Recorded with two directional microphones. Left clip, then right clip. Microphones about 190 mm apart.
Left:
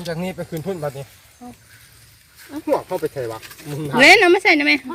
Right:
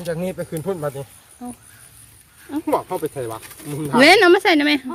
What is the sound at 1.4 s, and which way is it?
Speech, 30° right (ahead or behind).